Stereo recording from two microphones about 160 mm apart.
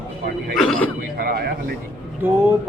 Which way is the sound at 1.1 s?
75° right (ahead or behind).